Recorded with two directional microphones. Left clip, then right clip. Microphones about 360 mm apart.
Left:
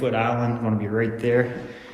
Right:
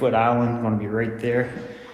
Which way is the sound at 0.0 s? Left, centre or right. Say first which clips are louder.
Right 4 dB; centre.